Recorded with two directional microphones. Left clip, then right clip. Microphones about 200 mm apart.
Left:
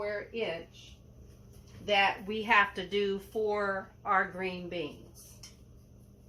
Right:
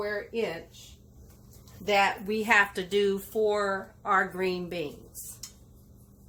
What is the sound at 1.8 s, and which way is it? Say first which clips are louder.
A woman's voice: right 3 dB; 60° right (ahead or behind).